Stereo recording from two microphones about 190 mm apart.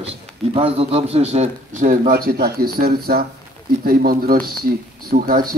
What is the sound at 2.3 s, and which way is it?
Speech, 55° right (ahead or behind).